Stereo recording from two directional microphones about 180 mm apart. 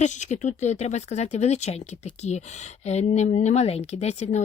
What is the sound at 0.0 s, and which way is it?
Speech, 40° left (ahead or behind).